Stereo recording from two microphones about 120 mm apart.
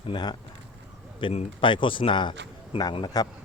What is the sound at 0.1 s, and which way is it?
Speech, 35° left (ahead or behind).